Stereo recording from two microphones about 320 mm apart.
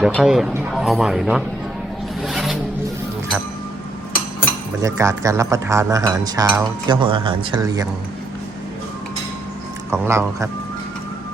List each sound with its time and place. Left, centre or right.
0.0 s speech: centre
2.2 s zipper: centre
4.8 s speech: centre
9.9 s speech: centre